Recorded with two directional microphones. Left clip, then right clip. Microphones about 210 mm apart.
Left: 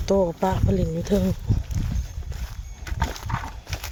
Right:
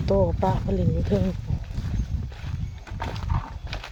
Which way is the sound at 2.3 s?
25° left (ahead or behind).